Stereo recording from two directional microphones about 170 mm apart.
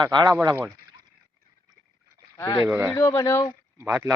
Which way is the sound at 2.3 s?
15° left (ahead or behind).